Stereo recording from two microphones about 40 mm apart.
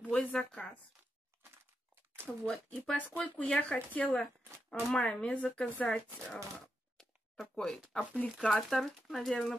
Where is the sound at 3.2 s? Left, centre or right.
Left.